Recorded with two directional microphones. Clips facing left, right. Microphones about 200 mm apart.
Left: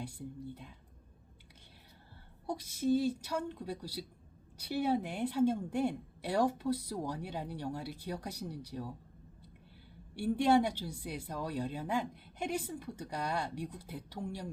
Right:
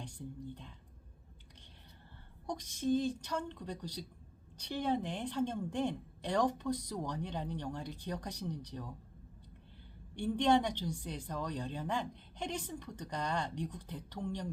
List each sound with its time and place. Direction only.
0.0 s a woman's voice: 10° left (ahead or behind)
2.5 s a woman's voice: 5° left (ahead or behind)
10.2 s a woman's voice: 5° left (ahead or behind)